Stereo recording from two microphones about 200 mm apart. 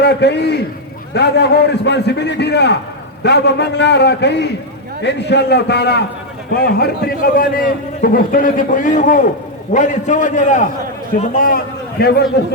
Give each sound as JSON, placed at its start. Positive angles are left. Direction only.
{"t": 0.0, "sound": "a man's voice", "side_deg": 55}